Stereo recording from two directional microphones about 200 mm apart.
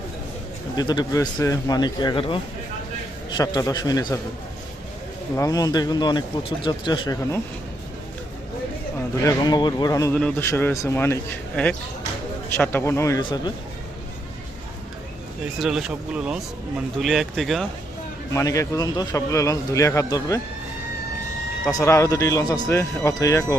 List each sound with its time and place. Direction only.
0.8 s a man's voice: 20° left (ahead or behind)
5.4 s speech: 15° left (ahead or behind)
9.2 s a man's voice: 20° left (ahead or behind)
15.5 s speech: centre (ahead or behind)
18.3 s a man's voice: 15° left (ahead or behind)
21.7 s a man's voice: 15° left (ahead or behind)